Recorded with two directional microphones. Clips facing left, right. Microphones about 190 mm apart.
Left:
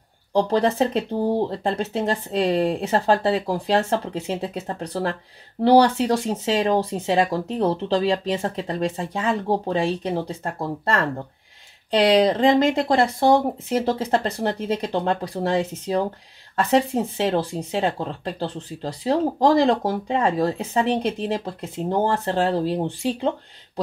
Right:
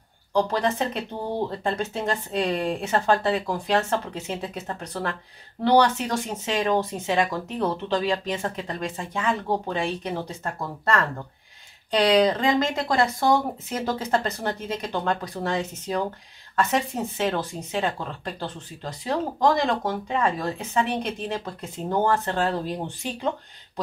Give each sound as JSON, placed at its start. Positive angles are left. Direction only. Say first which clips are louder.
{"t": 0.3, "sound": "speech", "louder": "left 4 dB", "side_deg": 30}